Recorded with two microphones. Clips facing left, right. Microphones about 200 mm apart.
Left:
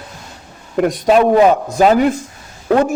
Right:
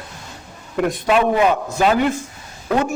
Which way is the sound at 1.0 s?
40° left (ahead or behind).